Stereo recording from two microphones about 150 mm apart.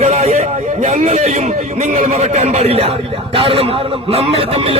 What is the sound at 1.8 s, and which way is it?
Speech, 50° right (ahead or behind).